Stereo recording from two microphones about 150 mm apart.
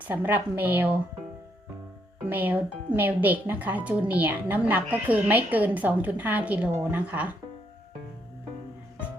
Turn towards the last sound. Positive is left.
turn(degrees=-10)  # may be behind; listen again after turning